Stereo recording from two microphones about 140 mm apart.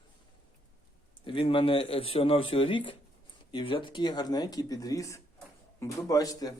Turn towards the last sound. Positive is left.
turn(degrees=25)  # may be behind; listen again after turning